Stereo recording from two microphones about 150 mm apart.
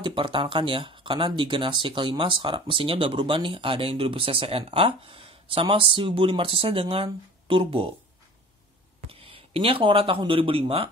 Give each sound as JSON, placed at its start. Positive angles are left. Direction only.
{"t": 0.0, "sound": "speech", "side_deg": -35}
{"t": 9.1, "sound": "speech", "side_deg": -40}